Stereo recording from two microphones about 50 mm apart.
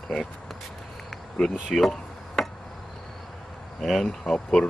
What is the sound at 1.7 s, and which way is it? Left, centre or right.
Chop, centre.